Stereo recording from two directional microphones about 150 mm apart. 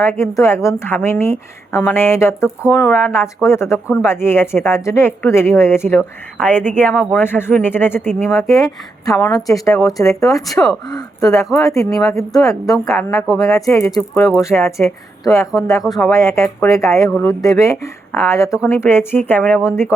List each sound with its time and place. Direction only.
0.0 s speech: 15° left (ahead or behind)
10.4 s speech: centre (ahead or behind)
10.8 s speech: 25° left (ahead or behind)